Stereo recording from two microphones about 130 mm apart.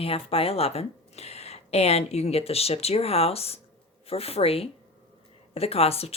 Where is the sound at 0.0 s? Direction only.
45° left (ahead or behind).